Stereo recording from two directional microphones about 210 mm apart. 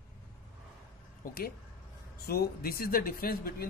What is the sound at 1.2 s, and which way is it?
Speech, 45° left (ahead or behind).